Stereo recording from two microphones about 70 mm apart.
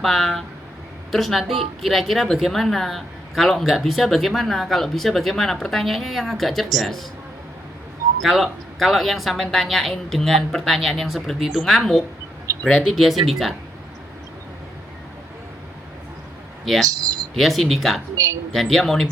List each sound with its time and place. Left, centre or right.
0.0 s speech: centre
8.2 s speech: centre
16.8 s speech: right
17.3 s speech: centre